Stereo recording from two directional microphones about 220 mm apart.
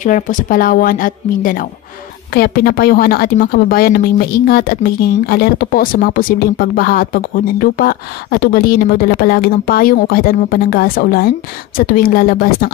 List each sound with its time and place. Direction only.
0.0 s a woman's voice: 35° left (ahead or behind)